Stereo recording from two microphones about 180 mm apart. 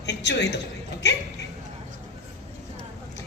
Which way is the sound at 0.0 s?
75° left (ahead or behind).